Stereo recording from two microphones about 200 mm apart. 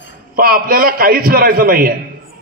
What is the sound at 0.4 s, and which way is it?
A man's voice, 45° right (ahead or behind).